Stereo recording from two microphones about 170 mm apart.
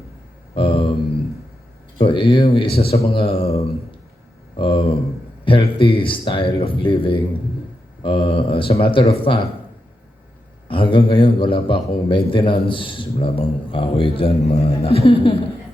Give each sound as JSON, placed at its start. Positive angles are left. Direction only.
{"t": 0.5, "sound": "a man's voice", "side_deg": 30}
{"t": 2.0, "sound": "a man's voice", "side_deg": 30}
{"t": 10.7, "sound": "a man's voice", "side_deg": 30}